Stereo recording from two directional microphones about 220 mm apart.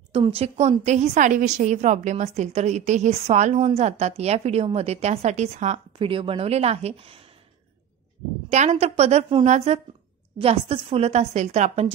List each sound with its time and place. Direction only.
0.1 s a woman's voice: 25° right (ahead or behind)
8.5 s a woman's voice: 30° right (ahead or behind)